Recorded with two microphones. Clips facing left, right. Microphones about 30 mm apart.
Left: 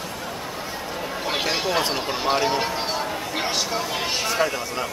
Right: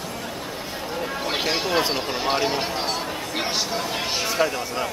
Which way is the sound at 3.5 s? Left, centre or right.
Centre.